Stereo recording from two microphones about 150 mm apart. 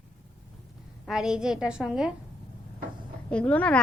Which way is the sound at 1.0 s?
5° right (ahead or behind).